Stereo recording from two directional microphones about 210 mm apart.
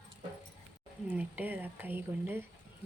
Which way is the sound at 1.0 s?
10° right (ahead or behind).